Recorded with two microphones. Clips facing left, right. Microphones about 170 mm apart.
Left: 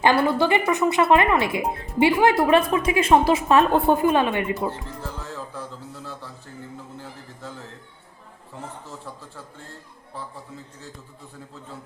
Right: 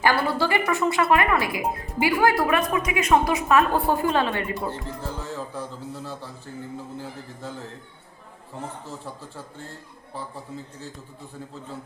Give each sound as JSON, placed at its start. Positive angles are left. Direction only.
{"t": 0.0, "sound": "speech", "side_deg": 20}